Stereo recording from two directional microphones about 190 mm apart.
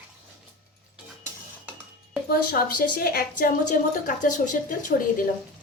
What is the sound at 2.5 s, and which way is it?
A woman's voice, 50° left (ahead or behind).